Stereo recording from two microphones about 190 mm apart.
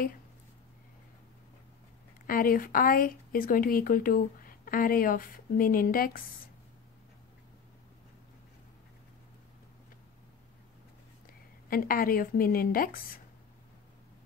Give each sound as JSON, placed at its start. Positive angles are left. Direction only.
{"t": 2.2, "sound": "speech", "side_deg": 50}
{"t": 11.7, "sound": "speech", "side_deg": 50}